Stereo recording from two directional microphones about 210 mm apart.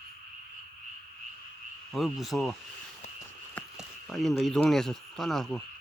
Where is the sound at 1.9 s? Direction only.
Centre (ahead or behind).